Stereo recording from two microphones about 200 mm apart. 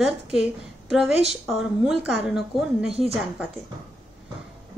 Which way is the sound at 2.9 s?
30° right (ahead or behind).